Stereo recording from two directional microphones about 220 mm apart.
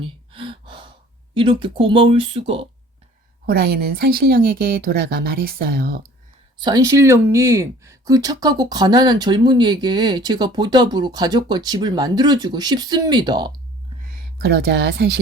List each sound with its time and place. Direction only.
0.0 s gasp: 25° right (ahead or behind)
1.3 s speech: 25° right (ahead or behind)
3.4 s speech: 45° right (ahead or behind)
6.6 s speech: 20° right (ahead or behind)
14.3 s speech: 45° right (ahead or behind)